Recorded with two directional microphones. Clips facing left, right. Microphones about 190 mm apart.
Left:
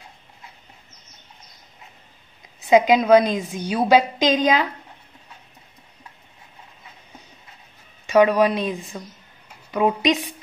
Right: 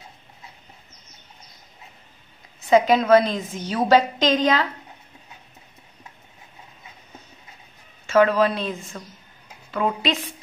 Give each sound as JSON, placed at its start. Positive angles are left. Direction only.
{"t": 2.7, "sound": "a woman's voice", "side_deg": 15}
{"t": 8.1, "sound": "a woman's voice", "side_deg": 15}